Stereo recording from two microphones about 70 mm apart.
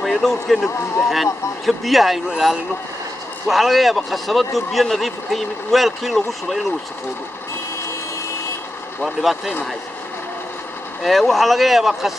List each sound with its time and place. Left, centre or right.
0.0 s speech: centre
0.7 s speech: left
1.0 s speech: centre
9.0 s speech: centre
11.0 s speech: centre